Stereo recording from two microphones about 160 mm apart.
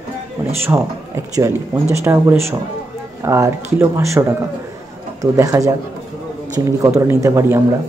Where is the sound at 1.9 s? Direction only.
15° right (ahead or behind).